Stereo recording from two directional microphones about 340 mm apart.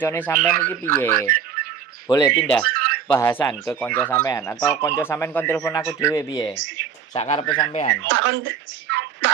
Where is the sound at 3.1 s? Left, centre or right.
Centre.